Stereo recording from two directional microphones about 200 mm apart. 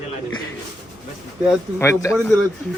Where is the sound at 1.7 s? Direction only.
15° left (ahead or behind).